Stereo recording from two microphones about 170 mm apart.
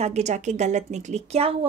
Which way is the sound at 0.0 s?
40° right (ahead or behind).